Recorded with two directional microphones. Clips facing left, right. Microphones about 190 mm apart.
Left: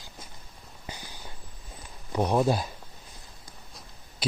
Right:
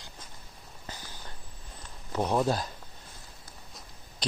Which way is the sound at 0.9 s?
15° left (ahead or behind).